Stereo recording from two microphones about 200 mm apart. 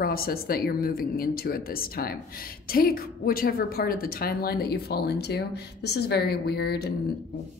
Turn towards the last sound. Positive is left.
turn(degrees=55)  # may be behind; listen again after turning